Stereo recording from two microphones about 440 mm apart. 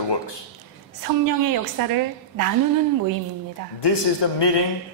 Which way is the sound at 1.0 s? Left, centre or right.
Right.